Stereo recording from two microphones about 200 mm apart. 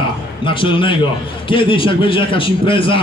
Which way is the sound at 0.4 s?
25° left (ahead or behind).